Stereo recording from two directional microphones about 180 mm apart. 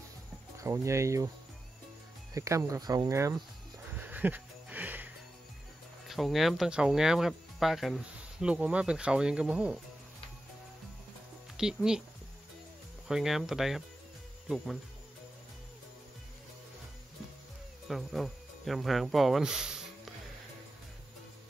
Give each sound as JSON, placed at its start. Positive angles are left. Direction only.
{"t": 0.6, "sound": "speech", "side_deg": -15}
{"t": 2.3, "sound": "speech", "side_deg": -15}
{"t": 3.9, "sound": "a sound", "side_deg": -10}
{"t": 6.0, "sound": "speech", "side_deg": 0}
{"t": 11.5, "sound": "speech", "side_deg": -5}
{"t": 13.1, "sound": "speech", "side_deg": 0}
{"t": 17.8, "sound": "speech", "side_deg": 0}